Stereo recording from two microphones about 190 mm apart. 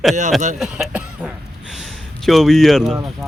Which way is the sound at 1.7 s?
Centre (ahead or behind).